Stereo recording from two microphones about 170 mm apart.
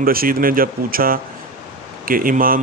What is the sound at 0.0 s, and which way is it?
A man's voice, 60° right (ahead or behind).